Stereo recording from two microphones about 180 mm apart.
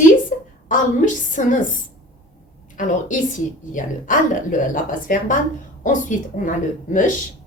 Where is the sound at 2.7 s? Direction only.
45° left (ahead or behind).